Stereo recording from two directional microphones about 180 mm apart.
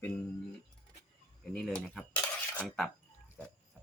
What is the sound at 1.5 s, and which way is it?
Speech, 5° left (ahead or behind).